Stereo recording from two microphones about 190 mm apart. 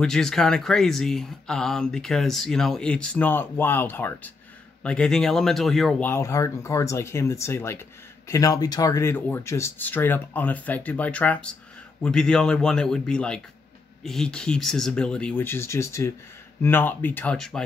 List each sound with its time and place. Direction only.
0.0 s speech: 5° left (ahead or behind)